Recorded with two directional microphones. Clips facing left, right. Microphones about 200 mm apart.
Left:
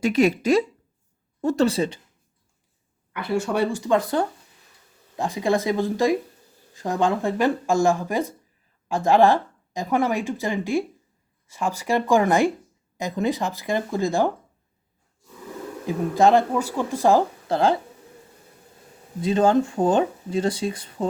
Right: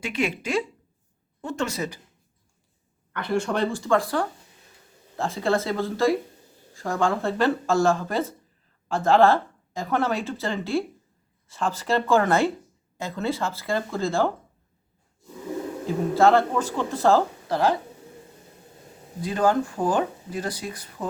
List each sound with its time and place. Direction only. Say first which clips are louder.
0.0 s speech: left 8 dB; 40° left (ahead or behind)
3.1 s speech: left 1 dB; 5° left (ahead or behind)
15.9 s speech: left 1 dB; 15° left (ahead or behind)
19.2 s speech: left 4 dB; 25° left (ahead or behind)